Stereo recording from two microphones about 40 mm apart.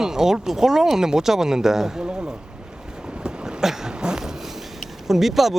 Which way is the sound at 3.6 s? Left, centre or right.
Centre.